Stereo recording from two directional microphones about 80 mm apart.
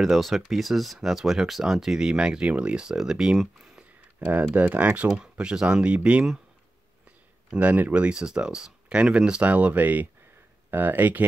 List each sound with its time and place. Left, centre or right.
0.0 s speech: centre
7.5 s speech: centre